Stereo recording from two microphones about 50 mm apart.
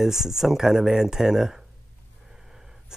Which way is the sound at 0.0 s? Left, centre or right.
Centre.